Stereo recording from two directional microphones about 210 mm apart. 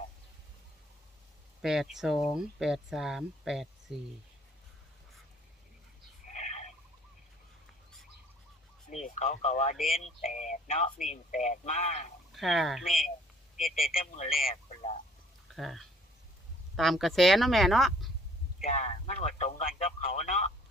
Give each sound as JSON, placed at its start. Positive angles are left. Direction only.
{"t": 1.6, "sound": "speech", "side_deg": 0}
{"t": 6.3, "sound": "a sound", "side_deg": 35}
{"t": 8.9, "sound": "speech", "side_deg": 35}
{"t": 12.3, "sound": "speech", "side_deg": 0}
{"t": 13.6, "sound": "speech", "side_deg": 45}
{"t": 14.5, "sound": "speech", "side_deg": 30}
{"t": 15.5, "sound": "speech", "side_deg": 0}
{"t": 18.6, "sound": "speech", "side_deg": 35}